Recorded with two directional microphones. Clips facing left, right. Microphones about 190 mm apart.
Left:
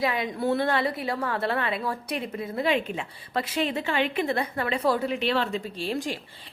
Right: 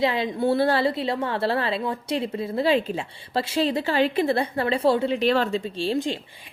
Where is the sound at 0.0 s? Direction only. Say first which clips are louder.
Right 4 dB; 25° right (ahead or behind).